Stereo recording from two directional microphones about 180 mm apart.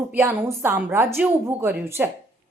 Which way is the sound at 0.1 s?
10° right (ahead or behind).